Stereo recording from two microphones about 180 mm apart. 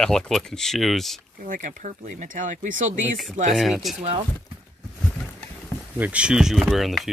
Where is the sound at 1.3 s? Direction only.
45° right (ahead or behind).